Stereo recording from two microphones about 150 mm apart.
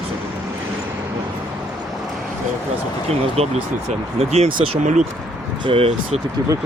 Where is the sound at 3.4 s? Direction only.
40° right (ahead or behind).